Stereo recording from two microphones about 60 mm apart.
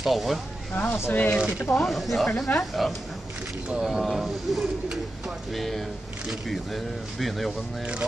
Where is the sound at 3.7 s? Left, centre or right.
Centre.